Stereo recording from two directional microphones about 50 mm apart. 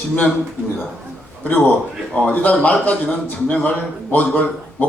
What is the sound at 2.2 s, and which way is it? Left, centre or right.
A man's voice, left.